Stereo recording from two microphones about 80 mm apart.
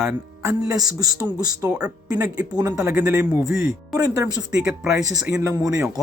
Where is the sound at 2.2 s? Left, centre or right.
Right.